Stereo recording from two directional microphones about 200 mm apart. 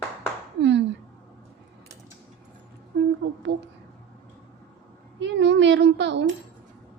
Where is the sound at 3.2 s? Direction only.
60° right (ahead or behind).